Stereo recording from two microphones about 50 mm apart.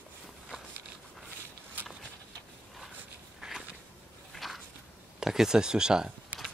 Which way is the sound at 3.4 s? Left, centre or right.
Centre.